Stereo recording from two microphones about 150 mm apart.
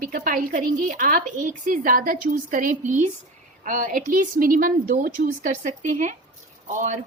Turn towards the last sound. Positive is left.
turn(degrees=-55)  # may be behind; listen again after turning